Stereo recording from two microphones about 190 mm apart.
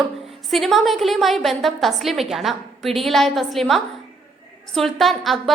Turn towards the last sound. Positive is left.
turn(degrees=0)  # may be behind; listen again after turning